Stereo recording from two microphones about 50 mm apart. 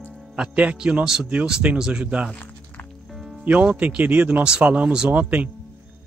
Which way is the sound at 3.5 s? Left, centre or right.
Right.